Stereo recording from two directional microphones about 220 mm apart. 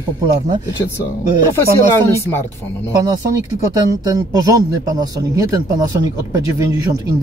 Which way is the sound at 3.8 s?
15° right (ahead or behind).